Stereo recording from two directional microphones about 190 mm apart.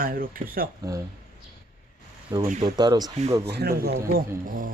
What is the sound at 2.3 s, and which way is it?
Speech, 20° right (ahead or behind).